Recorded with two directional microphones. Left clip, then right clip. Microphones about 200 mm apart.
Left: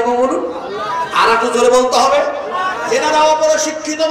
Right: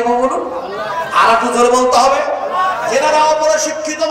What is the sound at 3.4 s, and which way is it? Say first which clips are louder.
Speech: even; 40° left (ahead or behind).